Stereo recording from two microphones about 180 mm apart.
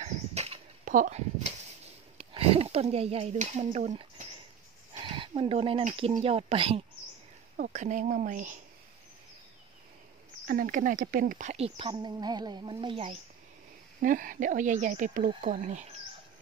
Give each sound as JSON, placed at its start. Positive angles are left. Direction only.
{"t": 0.0, "sound": "a sound", "side_deg": -35}
{"t": 2.1, "sound": "speech", "side_deg": -30}
{"t": 5.0, "sound": "a sound", "side_deg": -30}
{"t": 6.2, "sound": "speech", "side_deg": -30}
{"t": 7.5, "sound": "speech", "side_deg": -50}
{"t": 10.4, "sound": "speech", "side_deg": -50}
{"t": 14.0, "sound": "speech", "side_deg": -50}